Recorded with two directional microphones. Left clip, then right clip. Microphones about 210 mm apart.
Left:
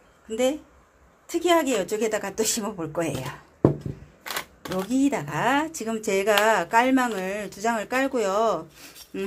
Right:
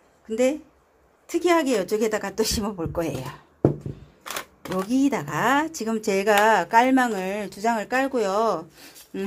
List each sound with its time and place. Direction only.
0.3 s speech: 25° right (ahead or behind)